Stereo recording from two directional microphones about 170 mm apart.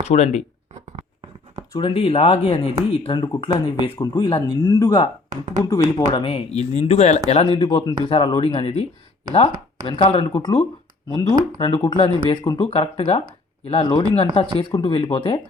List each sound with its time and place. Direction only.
0.0 s speech: 40° left (ahead or behind)
1.7 s speech: 30° left (ahead or behind)
5.3 s speech: 45° right (ahead or behind)
5.6 s speech: 25° left (ahead or behind)